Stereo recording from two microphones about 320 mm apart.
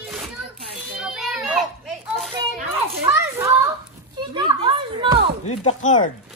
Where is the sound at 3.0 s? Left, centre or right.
Centre.